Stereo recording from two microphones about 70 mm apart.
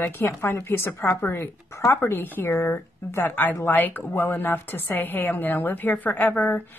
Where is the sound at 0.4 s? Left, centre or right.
Left.